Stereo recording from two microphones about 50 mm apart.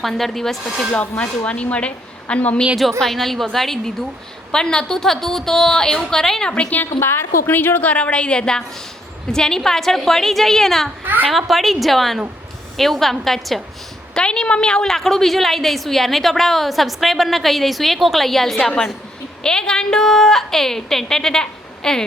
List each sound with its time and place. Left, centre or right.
0.0 s a woman's voice: centre
0.9 s a woman's voice: left
3.0 s a woman's voice: centre
7.0 s a woman's voice: left; by 10.9 s centre
11.0 s a woman's voice: right
11.3 s a woman's voice: centre
14.1 s a woman's voice: centre
14.9 s a woman's voice: centre